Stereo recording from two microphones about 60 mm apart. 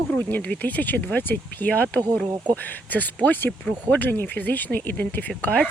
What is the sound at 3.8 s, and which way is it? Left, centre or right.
Speech, left.